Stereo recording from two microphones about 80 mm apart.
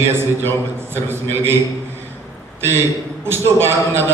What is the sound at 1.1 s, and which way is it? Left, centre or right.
Speech, right.